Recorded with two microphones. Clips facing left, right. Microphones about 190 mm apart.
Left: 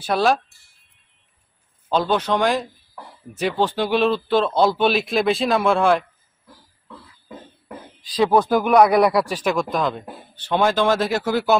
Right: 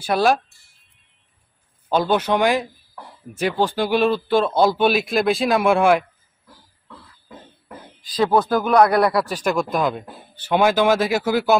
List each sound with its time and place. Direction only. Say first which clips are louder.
0.0 s speech: right 1 dB; centre (ahead or behind)
1.9 s speech: right 1 dB; 10° right (ahead or behind)
8.4 s a man's voice: left 1 dB; centre (ahead or behind)